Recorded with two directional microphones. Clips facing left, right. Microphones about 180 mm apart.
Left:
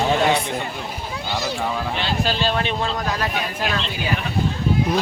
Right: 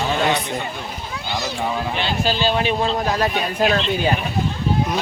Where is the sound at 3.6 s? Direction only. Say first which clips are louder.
Right 11 dB; 45° right (ahead or behind).